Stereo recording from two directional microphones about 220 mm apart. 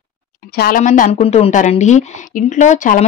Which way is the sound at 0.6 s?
40° left (ahead or behind).